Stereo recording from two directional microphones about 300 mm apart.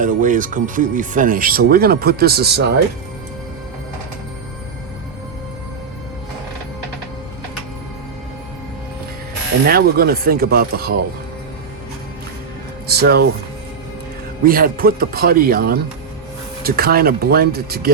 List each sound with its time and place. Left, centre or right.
0.0 s speech: right
9.6 s speech: right
12.9 s speech: right
14.4 s speech: right